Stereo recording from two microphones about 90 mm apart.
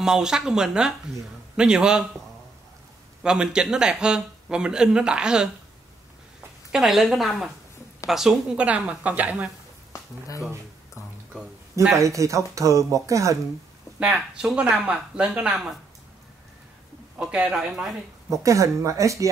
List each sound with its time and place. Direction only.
0.0 s a man's voice: 5° right (ahead or behind)
3.2 s a man's voice: 10° right (ahead or behind)
6.7 s a woman's voice: centre (ahead or behind)
11.9 s speech: 35° right (ahead or behind)
13.9 s a man's voice: 10° right (ahead or behind)
17.2 s a man's voice: 10° right (ahead or behind)
18.3 s speech: 35° right (ahead or behind)